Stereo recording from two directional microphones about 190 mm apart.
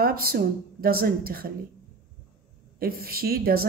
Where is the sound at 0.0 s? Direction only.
50° right (ahead or behind).